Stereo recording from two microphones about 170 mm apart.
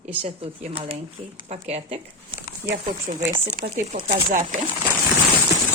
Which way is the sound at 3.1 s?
50° right (ahead or behind).